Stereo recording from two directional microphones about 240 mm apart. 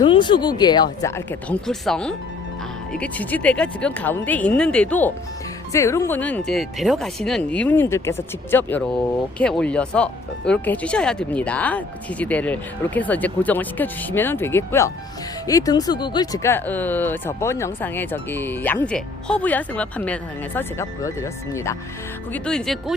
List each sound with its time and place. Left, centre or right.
0.0 s speech: centre